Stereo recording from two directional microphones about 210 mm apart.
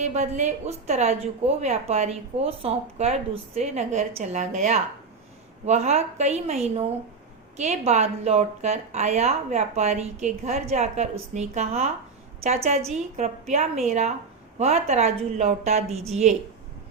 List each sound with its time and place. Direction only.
0.0 s a woman's voice: 35° right (ahead or behind)